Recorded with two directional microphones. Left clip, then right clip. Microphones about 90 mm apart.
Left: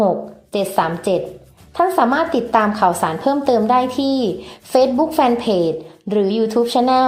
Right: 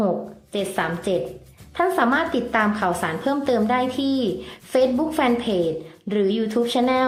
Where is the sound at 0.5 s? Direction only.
30° left (ahead or behind).